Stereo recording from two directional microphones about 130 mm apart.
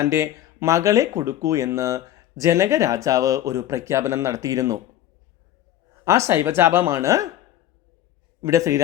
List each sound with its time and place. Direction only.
0.0 s speech: 25° right (ahead or behind)
6.1 s speech: 20° right (ahead or behind)
8.4 s a man's voice: 25° right (ahead or behind)